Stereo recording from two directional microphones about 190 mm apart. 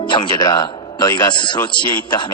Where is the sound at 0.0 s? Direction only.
25° left (ahead or behind).